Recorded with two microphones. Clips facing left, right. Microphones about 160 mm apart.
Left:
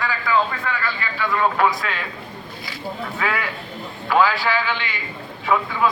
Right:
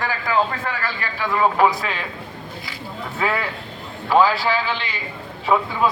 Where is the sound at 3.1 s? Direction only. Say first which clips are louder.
Right 4 dB; 30° right (ahead or behind).